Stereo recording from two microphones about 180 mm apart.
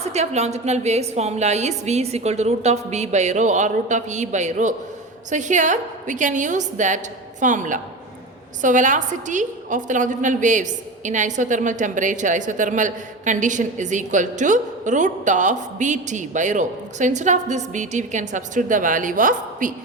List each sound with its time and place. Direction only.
0.1 s a woman's voice: 40° right (ahead or behind)